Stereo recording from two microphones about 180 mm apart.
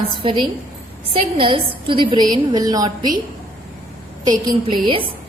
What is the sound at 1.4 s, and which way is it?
A woman's voice, 30° right (ahead or behind).